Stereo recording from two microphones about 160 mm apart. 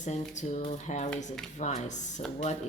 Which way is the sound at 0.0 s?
50° left (ahead or behind).